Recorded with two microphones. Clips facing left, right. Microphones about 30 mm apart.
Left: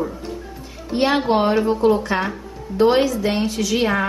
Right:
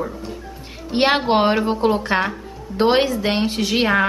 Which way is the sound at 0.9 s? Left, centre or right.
Right.